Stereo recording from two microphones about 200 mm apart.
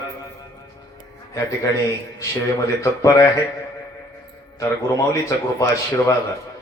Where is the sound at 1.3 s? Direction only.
15° left (ahead or behind).